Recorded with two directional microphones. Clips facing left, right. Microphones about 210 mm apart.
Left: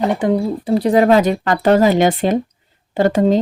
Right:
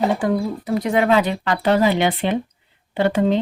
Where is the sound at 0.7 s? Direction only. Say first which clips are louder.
Left 5 dB; 35° left (ahead or behind).